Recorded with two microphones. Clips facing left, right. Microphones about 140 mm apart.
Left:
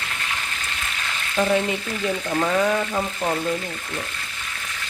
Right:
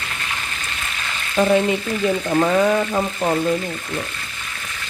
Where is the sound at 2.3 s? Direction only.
45° right (ahead or behind).